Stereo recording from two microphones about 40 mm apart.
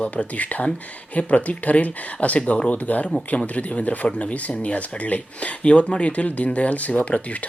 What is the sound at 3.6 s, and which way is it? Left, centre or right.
Speech, left.